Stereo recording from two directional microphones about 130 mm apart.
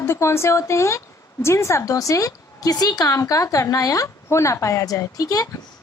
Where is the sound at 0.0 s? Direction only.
20° left (ahead or behind).